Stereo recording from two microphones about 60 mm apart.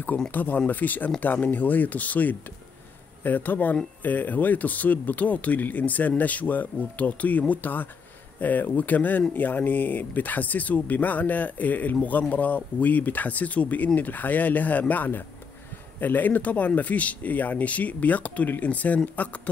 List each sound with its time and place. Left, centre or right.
0.3 s speech: left